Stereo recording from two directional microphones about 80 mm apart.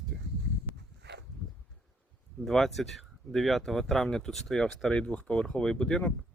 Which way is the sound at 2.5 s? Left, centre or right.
Centre.